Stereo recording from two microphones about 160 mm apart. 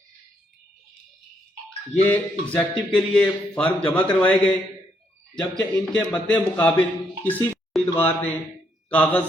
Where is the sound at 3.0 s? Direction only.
5° left (ahead or behind).